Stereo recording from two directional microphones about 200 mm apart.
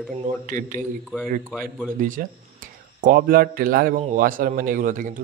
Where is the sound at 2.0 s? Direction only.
40° right (ahead or behind).